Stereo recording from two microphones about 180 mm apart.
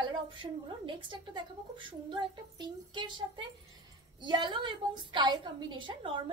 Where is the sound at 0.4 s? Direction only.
25° right (ahead or behind).